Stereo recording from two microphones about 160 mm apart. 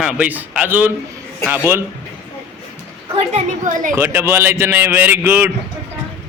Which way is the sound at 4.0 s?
15° right (ahead or behind).